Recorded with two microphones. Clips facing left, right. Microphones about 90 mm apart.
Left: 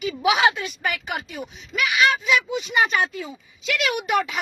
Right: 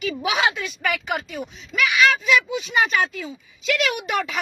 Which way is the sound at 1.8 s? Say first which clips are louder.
Right 2 dB; 30° left (ahead or behind).